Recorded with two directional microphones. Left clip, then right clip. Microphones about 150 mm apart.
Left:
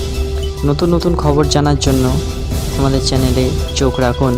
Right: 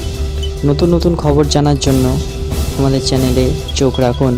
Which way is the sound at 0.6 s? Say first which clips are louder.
Right 2 dB; centre (ahead or behind).